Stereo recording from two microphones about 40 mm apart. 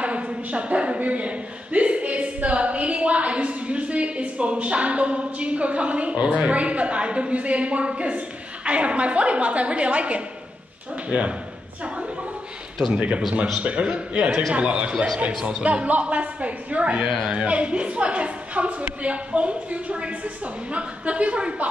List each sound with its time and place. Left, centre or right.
0.0 s a man's voice: right
12.7 s speech: centre
13.6 s a man's voice: right